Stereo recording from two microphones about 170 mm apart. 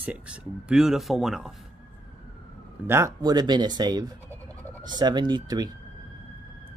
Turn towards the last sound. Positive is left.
turn(degrees=-25)  # may be behind; listen again after turning